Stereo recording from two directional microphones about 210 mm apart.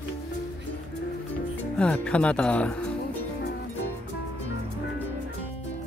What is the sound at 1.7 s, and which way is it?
Speech, 5° left (ahead or behind).